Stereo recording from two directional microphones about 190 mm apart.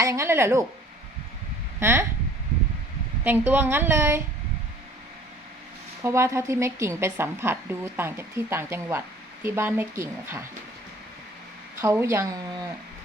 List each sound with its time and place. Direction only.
0.0 s a woman's voice: 15° right (ahead or behind)
1.8 s a woman's voice: 15° right (ahead or behind)
3.2 s a woman's voice: 10° right (ahead or behind)
6.0 s a woman's voice: 15° right (ahead or behind)
11.8 s a woman's voice: 15° right (ahead or behind)